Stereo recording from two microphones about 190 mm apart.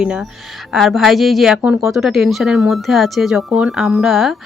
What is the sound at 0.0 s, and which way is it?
Speech, 5° right (ahead or behind).